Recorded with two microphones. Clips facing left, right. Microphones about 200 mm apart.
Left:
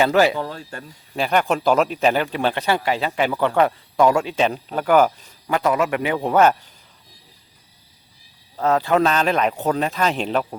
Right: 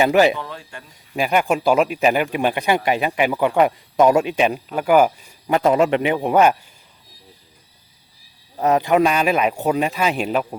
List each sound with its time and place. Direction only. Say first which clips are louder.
0.0 s speech: right 2 dB; 15° right (ahead or behind)
0.3 s speech: left 4 dB; 35° left (ahead or behind)
1.1 s speech: right 1 dB; 10° right (ahead or behind)
5.5 s a man's voice: right 4 dB; 25° right (ahead or behind)
8.5 s speech: right 2 dB; 15° right (ahead or behind)